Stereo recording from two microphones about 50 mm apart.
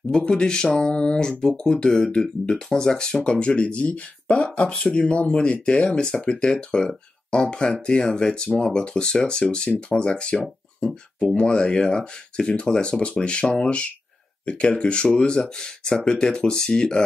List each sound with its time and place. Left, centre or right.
0.1 s speech: centre